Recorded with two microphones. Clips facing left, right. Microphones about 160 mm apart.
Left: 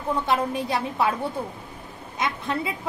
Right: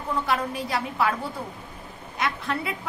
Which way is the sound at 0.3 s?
20° left (ahead or behind).